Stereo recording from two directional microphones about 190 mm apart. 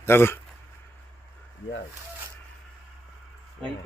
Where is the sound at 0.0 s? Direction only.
10° left (ahead or behind).